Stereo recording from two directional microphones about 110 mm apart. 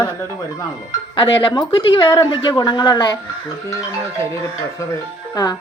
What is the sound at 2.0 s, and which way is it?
Speech, 45° left (ahead or behind).